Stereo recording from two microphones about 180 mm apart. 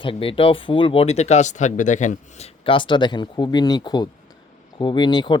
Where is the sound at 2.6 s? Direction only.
30° left (ahead or behind).